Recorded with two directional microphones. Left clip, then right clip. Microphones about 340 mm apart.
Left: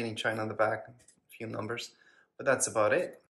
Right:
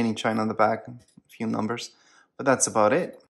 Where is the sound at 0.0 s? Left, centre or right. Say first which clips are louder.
Right 7 dB; centre.